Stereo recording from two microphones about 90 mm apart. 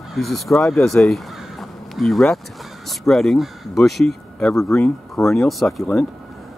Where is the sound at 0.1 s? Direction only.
Centre (ahead or behind).